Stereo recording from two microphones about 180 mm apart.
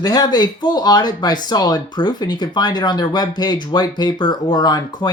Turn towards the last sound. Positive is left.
turn(degrees=20)  # may be behind; listen again after turning